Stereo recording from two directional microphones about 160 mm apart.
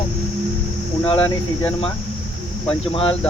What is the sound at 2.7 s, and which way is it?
Speech, 35° left (ahead or behind).